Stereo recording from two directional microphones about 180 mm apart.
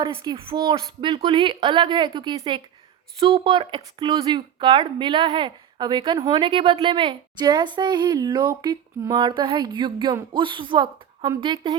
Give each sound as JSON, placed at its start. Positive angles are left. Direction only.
{"t": 0.0, "sound": "speech", "side_deg": -30}